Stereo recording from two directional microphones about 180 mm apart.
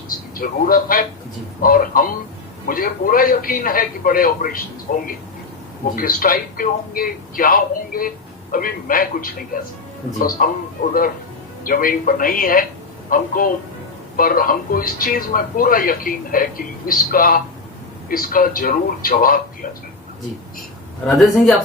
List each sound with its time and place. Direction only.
0.1 s a man's voice: 50° left (ahead or behind)
11.6 s a man's voice: 50° left (ahead or behind)
21.1 s speech: centre (ahead or behind)